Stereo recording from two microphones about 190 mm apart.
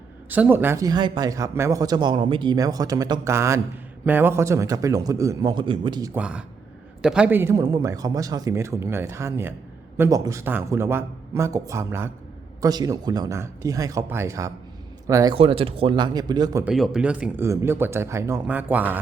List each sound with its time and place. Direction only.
0.3 s speech: 10° right (ahead or behind); by 6.1 s 25° right (ahead or behind)
6.1 s speech: 5° right (ahead or behind)
16.6 s speech: centre (ahead or behind)